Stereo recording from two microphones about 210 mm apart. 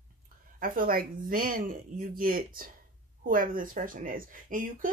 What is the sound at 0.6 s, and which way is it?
Speech, 40° right (ahead or behind).